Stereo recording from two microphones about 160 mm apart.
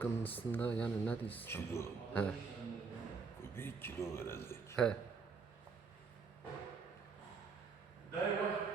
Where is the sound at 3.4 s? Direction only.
15° left (ahead or behind).